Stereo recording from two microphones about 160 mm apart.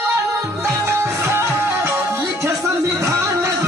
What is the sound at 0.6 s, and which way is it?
Music, 15° right (ahead or behind).